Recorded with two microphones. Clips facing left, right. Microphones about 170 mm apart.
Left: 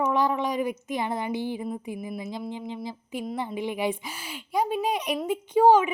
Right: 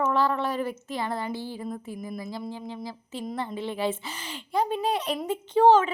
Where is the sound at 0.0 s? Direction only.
15° left (ahead or behind).